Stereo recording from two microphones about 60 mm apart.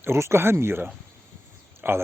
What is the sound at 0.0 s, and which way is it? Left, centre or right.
Speech, right.